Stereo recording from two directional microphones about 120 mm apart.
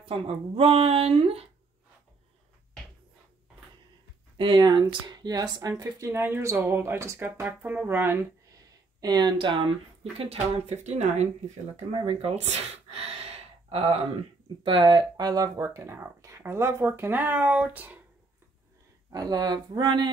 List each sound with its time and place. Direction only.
0.6 s speech: 50° right (ahead or behind)
4.4 s speech: 40° right (ahead or behind); by 8.2 s 20° right (ahead or behind)
9.0 s speech: 35° right (ahead or behind)
10.1 s speech: 55° right (ahead or behind); by 11.2 s 75° right (ahead or behind)
12.0 s gasp: 50° right (ahead or behind)
14.6 s speech: 45° right (ahead or behind); by 18.0 s 15° right (ahead or behind)
19.1 s speech: 35° right (ahead or behind)